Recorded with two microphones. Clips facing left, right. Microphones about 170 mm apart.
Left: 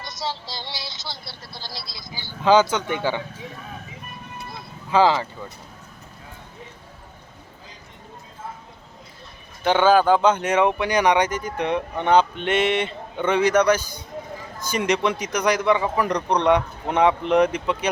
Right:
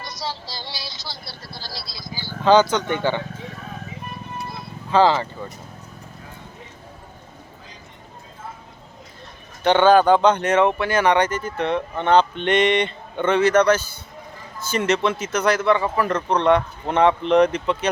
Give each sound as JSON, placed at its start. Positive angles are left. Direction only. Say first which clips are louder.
{"t": 0.0, "sound": "a sound", "louder": "even", "side_deg": 20}
{"t": 2.4, "sound": "speech", "louder": "right 1 dB", "side_deg": 10}
{"t": 4.9, "sound": "speech", "louder": "right 1 dB", "side_deg": 10}
{"t": 9.6, "sound": "speech", "louder": "right 2 dB", "side_deg": 5}